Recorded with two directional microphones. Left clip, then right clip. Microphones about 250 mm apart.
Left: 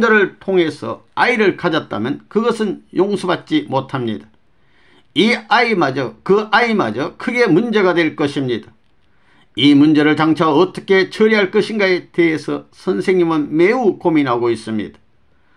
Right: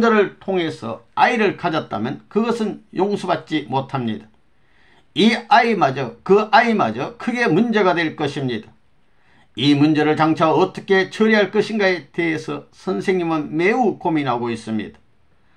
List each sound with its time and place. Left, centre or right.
0.0 s speech: left